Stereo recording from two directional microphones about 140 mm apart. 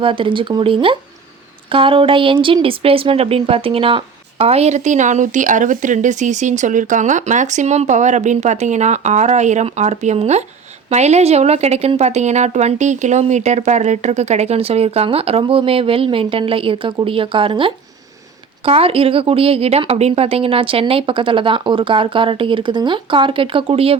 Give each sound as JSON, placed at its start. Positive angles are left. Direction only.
{"t": 0.0, "sound": "a woman's voice", "side_deg": -35}